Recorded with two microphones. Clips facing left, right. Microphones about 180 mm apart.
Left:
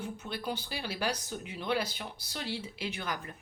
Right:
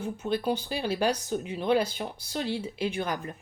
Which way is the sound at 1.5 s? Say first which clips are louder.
Right 7 dB; 40° right (ahead or behind).